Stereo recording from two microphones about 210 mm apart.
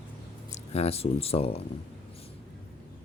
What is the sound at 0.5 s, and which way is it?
Speech, 30° left (ahead or behind).